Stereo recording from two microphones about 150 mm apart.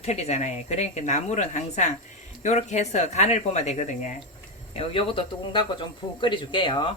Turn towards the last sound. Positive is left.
turn(degrees=35)  # may be behind; listen again after turning